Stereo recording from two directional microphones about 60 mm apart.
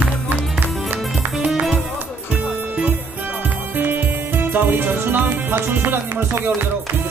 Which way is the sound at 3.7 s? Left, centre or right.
Right.